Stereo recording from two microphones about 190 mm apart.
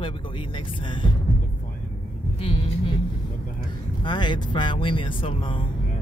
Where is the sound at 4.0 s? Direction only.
25° left (ahead or behind).